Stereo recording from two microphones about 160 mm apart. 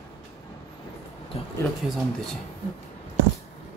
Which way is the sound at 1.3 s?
35° left (ahead or behind).